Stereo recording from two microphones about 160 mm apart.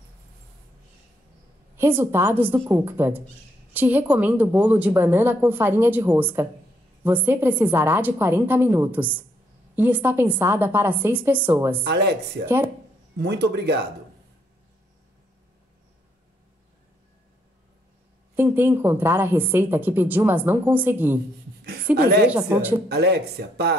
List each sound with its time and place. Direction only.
1.8 s speech: 15° right (ahead or behind)
11.8 s speech: 90° right
12.4 s speech: 10° right (ahead or behind)
13.2 s speech: 90° right
18.3 s speech: 15° right (ahead or behind)
21.9 s speech: 90° right
22.3 s speech: 10° right (ahead or behind)
22.8 s speech: 90° right